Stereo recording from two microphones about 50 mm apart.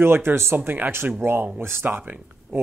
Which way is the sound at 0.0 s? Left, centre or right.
Right.